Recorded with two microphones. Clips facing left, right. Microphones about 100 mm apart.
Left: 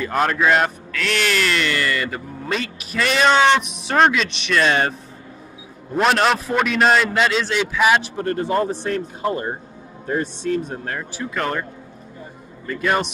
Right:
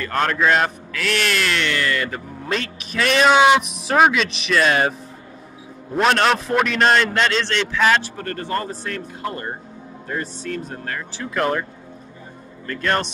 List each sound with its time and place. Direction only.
0.0 s speech: 5° left (ahead or behind)
5.9 s speech: centre (ahead or behind)
10.0 s speech: 20° left (ahead or behind)
11.2 s speech: centre (ahead or behind)
12.6 s speech: 5° left (ahead or behind)